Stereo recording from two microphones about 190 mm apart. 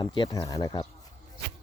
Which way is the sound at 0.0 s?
25° left (ahead or behind).